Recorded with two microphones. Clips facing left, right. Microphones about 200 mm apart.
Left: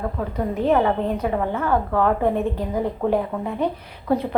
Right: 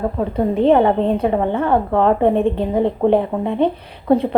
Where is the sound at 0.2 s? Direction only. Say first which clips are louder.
Right 8 dB; 25° right (ahead or behind).